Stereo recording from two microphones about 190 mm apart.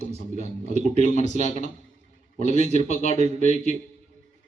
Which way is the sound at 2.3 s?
40° right (ahead or behind).